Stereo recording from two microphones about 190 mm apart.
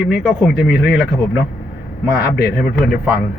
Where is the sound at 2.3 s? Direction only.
50° left (ahead or behind).